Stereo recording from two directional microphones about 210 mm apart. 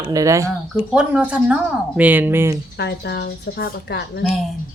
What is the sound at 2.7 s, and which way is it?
Speech, 55° left (ahead or behind).